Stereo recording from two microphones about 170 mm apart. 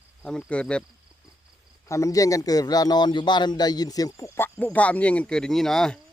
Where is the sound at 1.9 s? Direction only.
20° left (ahead or behind).